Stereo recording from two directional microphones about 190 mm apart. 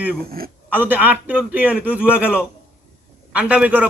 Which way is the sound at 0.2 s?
50° right (ahead or behind).